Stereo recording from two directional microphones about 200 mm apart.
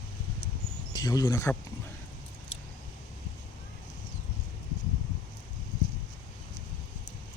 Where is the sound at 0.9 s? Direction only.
20° left (ahead or behind).